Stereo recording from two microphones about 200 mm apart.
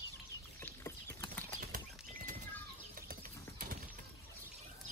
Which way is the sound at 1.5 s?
40° right (ahead or behind).